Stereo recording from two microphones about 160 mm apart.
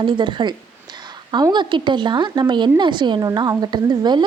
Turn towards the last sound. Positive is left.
turn(degrees=-25)  # may be behind; listen again after turning